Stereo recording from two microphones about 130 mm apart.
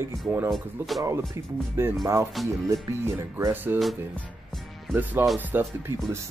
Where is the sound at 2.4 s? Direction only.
Centre (ahead or behind).